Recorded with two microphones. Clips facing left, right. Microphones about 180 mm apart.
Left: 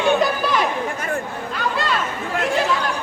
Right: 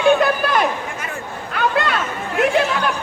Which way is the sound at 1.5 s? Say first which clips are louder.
Right 4 dB; 60° right (ahead or behind).